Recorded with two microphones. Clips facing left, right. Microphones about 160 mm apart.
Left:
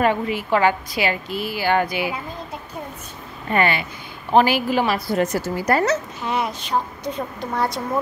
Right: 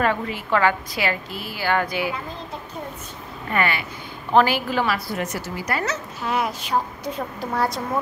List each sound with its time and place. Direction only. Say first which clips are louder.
0.0 s a woman's voice: left 3 dB; 15° left (ahead or behind)
3.5 s speech: left 3 dB; 25° left (ahead or behind)
4.3 s a woman's voice: left 2 dB; 15° left (ahead or behind)
5.1 s a woman's voice: left 7 dB; 35° left (ahead or behind)
6.2 s a woman's voice: right 4 dB; centre (ahead or behind)